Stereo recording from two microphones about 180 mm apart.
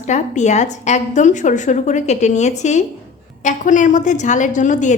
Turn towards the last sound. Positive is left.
turn(degrees=45)  # may be behind; listen again after turning